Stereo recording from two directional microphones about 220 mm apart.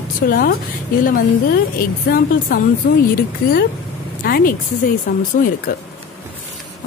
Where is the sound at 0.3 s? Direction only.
40° left (ahead or behind).